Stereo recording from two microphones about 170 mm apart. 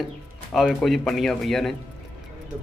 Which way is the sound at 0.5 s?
Centre (ahead or behind).